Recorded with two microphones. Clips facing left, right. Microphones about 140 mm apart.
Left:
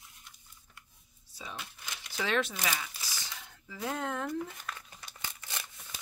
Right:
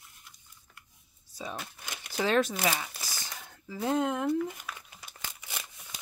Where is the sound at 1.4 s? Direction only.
45° right (ahead or behind).